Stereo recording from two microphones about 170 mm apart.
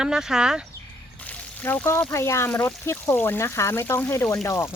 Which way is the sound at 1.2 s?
10° left (ahead or behind).